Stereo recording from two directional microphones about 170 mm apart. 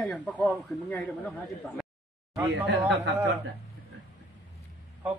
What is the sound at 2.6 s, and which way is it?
Speech, 90° right.